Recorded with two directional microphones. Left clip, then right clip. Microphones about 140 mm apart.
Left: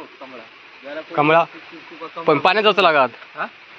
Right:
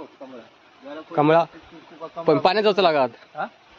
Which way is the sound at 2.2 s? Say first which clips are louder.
Left 3 dB; 25° right (ahead or behind).